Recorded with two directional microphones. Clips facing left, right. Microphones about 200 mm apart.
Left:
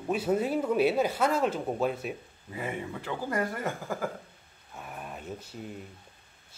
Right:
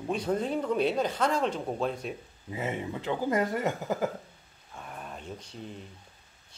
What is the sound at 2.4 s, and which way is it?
Speech, 20° right (ahead or behind).